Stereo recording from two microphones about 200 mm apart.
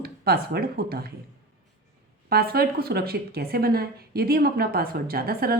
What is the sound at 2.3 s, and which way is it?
A woman's voice, 50° right (ahead or behind).